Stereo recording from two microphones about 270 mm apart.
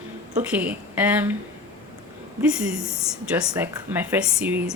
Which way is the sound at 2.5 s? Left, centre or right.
Centre.